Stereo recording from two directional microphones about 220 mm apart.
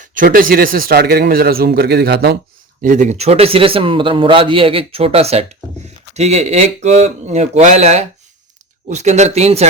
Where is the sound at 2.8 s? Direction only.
35° right (ahead or behind).